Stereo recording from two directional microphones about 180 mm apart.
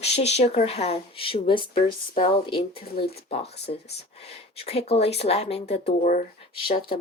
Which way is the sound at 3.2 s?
35° left (ahead or behind).